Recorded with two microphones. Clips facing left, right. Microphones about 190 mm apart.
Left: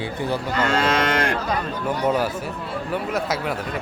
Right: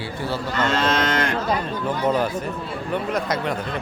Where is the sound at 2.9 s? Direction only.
5° left (ahead or behind).